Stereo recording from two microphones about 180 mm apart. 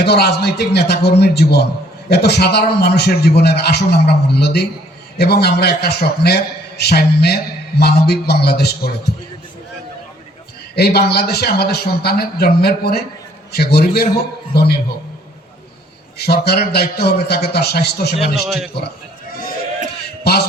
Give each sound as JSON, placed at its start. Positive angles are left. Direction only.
{"t": 0.0, "sound": "a man's voice", "side_deg": 65}
{"t": 10.8, "sound": "a man's voice", "side_deg": 65}
{"t": 16.1, "sound": "a man's voice", "side_deg": 65}
{"t": 19.3, "sound": "a sound", "side_deg": 55}
{"t": 20.3, "sound": "a man's voice", "side_deg": 65}